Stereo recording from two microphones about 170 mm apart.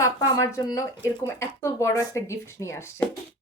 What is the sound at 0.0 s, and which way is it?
Speech, 15° left (ahead or behind).